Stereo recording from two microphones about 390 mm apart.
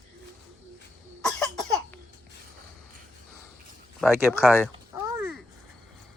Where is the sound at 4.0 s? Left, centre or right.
Centre.